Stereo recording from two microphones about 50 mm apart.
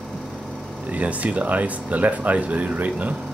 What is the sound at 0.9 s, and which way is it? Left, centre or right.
Speech, right.